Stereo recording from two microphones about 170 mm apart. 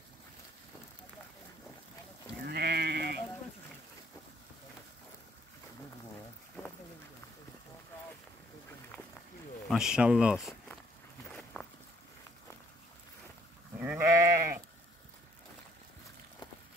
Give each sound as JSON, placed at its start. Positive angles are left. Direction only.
{"t": 2.4, "sound": "sheep", "side_deg": -75}
{"t": 9.7, "sound": "speech", "side_deg": -5}
{"t": 11.6, "sound": "a sound", "side_deg": 10}
{"t": 13.7, "sound": "goat", "side_deg": -10}